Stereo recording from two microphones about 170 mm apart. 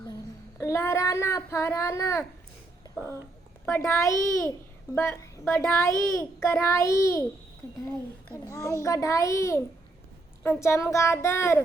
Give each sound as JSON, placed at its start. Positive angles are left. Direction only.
{"t": 0.6, "sound": "speech", "side_deg": 15}
{"t": 3.7, "sound": "speech", "side_deg": 15}
{"t": 8.3, "sound": "a child's voice", "side_deg": 15}